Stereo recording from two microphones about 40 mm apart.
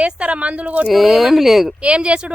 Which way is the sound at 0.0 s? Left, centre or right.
Right.